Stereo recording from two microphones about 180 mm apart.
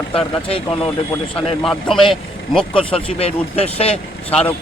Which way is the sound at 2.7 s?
30° left (ahead or behind).